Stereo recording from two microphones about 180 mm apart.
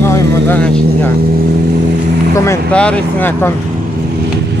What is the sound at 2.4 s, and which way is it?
Speech, 10° left (ahead or behind).